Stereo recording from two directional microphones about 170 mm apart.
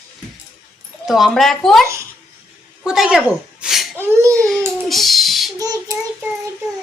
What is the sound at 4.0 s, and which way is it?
Speech, 15° right (ahead or behind).